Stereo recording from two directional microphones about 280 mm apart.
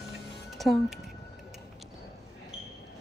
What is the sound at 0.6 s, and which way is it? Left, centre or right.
Speech, centre.